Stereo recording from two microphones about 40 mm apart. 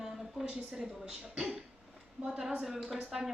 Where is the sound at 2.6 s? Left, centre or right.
Centre.